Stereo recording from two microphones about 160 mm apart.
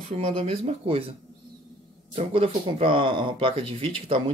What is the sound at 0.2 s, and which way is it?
Speech, 40° right (ahead or behind).